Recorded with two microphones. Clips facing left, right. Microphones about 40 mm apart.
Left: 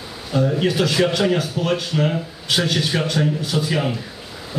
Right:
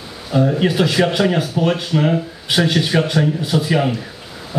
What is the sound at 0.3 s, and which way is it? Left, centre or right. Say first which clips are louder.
A man's voice: right 3 dB; centre.